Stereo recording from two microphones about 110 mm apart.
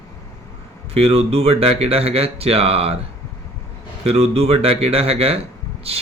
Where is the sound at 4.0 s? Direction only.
65° right (ahead or behind).